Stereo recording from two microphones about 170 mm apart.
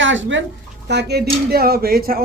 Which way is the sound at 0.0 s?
90° right.